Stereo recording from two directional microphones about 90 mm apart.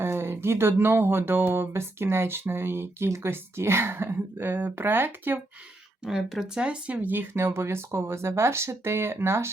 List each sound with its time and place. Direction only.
0.0 s speech: 25° right (ahead or behind)
6.1 s speech: centre (ahead or behind); by 9.5 s 30° right (ahead or behind)